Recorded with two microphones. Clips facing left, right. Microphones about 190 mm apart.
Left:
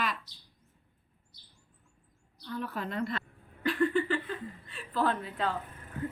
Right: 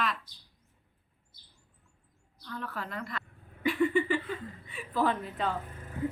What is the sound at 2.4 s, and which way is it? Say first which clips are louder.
Speech: left 3 dB; 15° left (ahead or behind).